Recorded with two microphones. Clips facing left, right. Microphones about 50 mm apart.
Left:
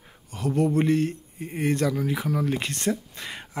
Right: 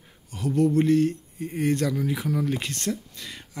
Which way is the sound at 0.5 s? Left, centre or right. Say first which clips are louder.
Right 1 dB; centre.